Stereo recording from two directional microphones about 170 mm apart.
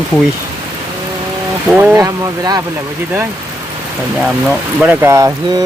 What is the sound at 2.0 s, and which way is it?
Speech, 20° right (ahead or behind).